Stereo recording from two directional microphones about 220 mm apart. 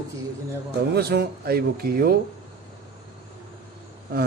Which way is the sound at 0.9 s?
45° right (ahead or behind).